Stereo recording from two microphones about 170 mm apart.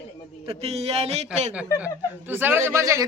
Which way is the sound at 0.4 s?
35° right (ahead or behind).